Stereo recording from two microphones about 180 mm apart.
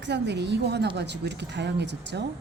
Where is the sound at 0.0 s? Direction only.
75° right (ahead or behind).